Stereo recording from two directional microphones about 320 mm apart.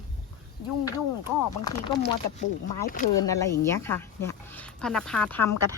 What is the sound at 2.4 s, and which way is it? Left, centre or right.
Speech, left.